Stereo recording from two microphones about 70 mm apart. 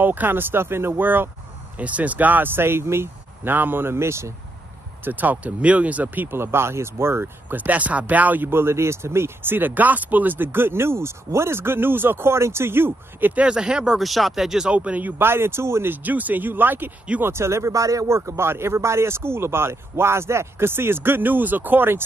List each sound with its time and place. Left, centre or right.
0.0 s speech: right
5.0 s speech: right
13.4 s speech: centre
14.7 s speech: centre; by 15.9 s right
15.9 s speech: right